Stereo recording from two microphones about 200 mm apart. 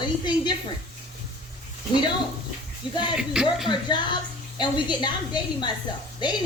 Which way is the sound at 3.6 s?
20° left (ahead or behind).